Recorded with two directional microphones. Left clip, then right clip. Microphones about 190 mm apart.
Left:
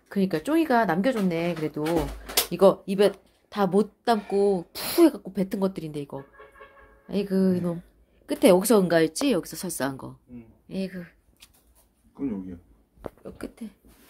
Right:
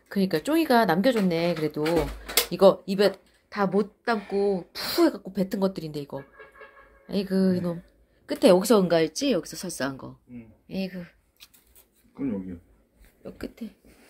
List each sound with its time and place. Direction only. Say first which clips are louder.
0.1 s speech: even; centre (ahead or behind)
2.5 s speech: right 1 dB; centre (ahead or behind)
3.4 s a woman's voice: left 2 dB; 25° left (ahead or behind)
10.7 s a sound: even; centre (ahead or behind)
13.2 s speech: right 1 dB; centre (ahead or behind)